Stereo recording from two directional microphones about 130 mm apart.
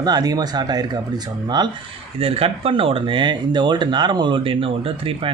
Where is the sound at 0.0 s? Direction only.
30° right (ahead or behind).